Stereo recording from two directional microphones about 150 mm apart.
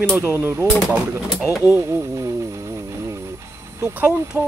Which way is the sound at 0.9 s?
5° right (ahead or behind).